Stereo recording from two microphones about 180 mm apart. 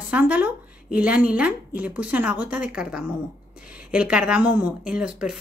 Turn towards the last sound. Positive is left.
turn(degrees=-5)  # may be behind; listen again after turning